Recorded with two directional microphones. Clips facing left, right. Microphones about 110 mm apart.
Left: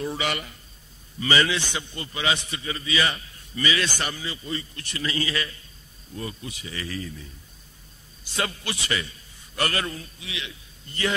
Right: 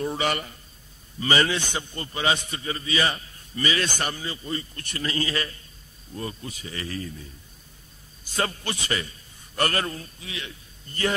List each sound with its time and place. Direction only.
0.0 s a man's voice: 45° right (ahead or behind)
8.4 s a man's voice: 45° right (ahead or behind)